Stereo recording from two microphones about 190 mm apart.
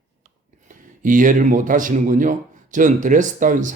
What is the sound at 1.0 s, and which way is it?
A man's voice, 45° right (ahead or behind).